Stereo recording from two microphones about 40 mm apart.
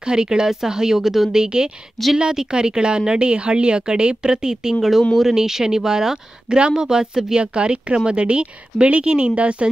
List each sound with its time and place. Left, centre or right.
0.0 s speech: centre
1.3 s a woman's voice: centre